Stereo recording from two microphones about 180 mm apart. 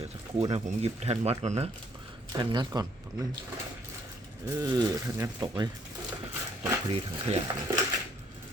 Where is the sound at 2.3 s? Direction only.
25° right (ahead or behind).